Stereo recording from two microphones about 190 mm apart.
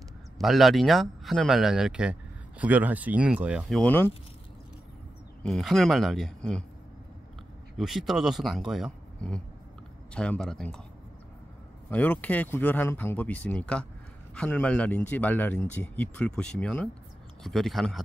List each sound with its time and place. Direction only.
0.4 s speech: centre (ahead or behind)
5.4 s speech: centre (ahead or behind)
7.7 s speech: centre (ahead or behind)
11.9 s speech: 10° left (ahead or behind)